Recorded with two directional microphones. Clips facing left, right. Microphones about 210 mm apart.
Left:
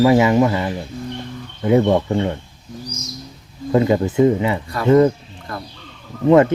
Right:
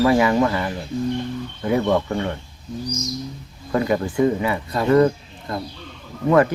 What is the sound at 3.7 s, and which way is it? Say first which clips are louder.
Speech: left 5 dB; 20° left (ahead or behind).